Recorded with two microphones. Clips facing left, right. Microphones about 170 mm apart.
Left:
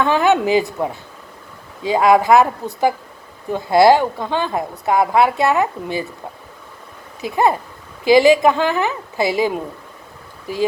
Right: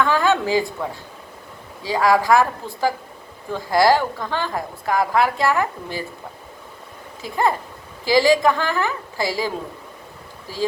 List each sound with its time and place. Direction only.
0.0 s a woman's voice: 20° left (ahead or behind)
7.2 s a woman's voice: 20° left (ahead or behind)
10.5 s speech: 20° left (ahead or behind)